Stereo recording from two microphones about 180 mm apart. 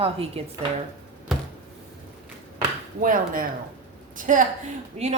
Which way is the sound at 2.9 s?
50° right (ahead or behind).